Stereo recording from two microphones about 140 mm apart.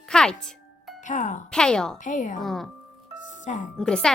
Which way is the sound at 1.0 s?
65° left (ahead or behind).